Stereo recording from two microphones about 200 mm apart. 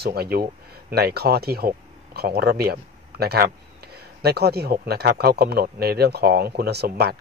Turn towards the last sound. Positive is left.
turn(degrees=-55)  # may be behind; listen again after turning